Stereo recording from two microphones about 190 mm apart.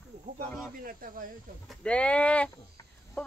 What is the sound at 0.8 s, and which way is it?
Speech, 50° right (ahead or behind).